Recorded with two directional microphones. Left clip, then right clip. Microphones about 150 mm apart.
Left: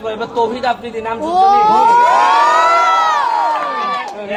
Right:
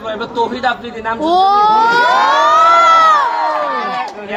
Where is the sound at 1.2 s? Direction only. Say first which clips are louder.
Even; 45° right (ahead or behind).